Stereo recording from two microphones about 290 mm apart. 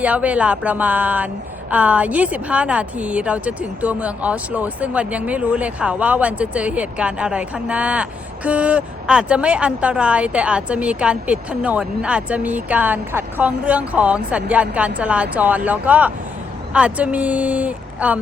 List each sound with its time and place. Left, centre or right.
0.0 s a woman's voice: centre